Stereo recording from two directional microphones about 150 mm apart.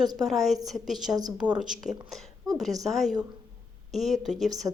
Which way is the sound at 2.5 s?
25° right (ahead or behind).